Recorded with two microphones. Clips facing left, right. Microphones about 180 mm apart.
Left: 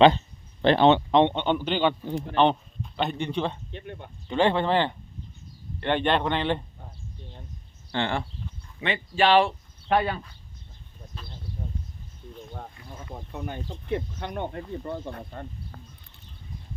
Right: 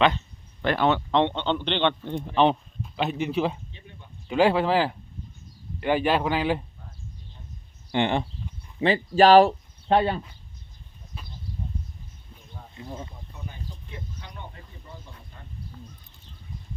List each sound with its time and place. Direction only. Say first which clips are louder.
0.6 s a man's voice: left 4 dB; 25° left (ahead or behind); by 3.6 s 5° right (ahead or behind)
3.7 s speech: left 10 dB; 65° left (ahead or behind)
4.3 s a man's voice: right 2 dB; 5° right (ahead or behind)
7.9 s speech: right 4 dB; 20° right (ahead or behind)
8.8 s speech: right 6 dB; 35° right (ahead or behind)
9.9 s speech: right 2 dB; 25° right (ahead or behind)
12.8 s a sound: right 7 dB; 25° right (ahead or behind)
13.1 s speech: left 7 dB; 65° left (ahead or behind)